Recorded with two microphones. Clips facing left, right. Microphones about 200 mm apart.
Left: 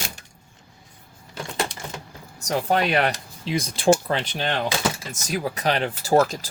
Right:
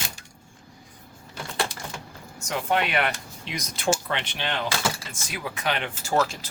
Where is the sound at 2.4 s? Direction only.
40° left (ahead or behind).